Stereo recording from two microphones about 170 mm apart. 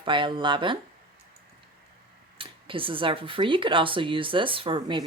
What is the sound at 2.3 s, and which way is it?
Speech, 30° right (ahead or behind).